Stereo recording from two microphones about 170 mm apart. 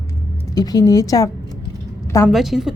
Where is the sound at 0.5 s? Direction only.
20° left (ahead or behind).